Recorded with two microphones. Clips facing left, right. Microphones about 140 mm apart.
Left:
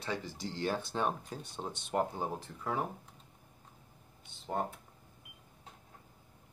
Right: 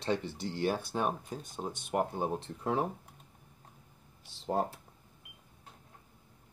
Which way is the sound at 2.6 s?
30° right (ahead or behind).